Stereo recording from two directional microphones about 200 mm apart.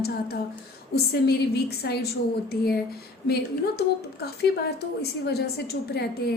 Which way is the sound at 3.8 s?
55° left (ahead or behind).